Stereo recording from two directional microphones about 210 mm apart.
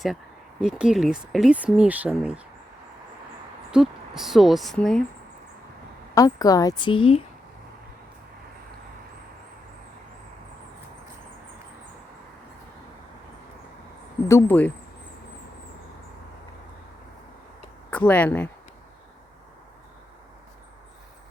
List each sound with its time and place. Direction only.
0.6 s speech: 5° right (ahead or behind)
3.7 s speech: centre (ahead or behind)
6.1 s a woman's voice: 15° left (ahead or behind)
14.3 s a woman's voice: 10° left (ahead or behind)
17.9 s a woman's voice: 10° left (ahead or behind)